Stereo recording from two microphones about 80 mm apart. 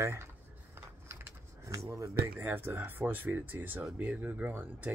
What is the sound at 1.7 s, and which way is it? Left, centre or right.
Speech, right.